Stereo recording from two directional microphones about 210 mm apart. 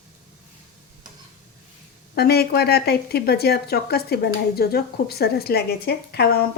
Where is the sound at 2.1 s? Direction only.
50° left (ahead or behind).